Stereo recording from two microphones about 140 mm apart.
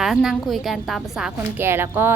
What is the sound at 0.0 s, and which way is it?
A woman's voice, centre (ahead or behind).